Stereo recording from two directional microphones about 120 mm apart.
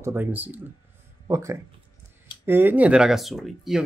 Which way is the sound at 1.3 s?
25° right (ahead or behind).